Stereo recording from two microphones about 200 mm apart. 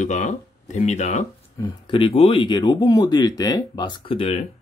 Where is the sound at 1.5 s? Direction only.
20° left (ahead or behind).